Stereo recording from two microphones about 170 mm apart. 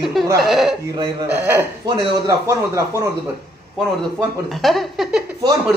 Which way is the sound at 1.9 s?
20° right (ahead or behind).